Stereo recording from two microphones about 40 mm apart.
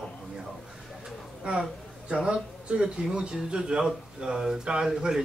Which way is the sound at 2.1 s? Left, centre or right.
Centre.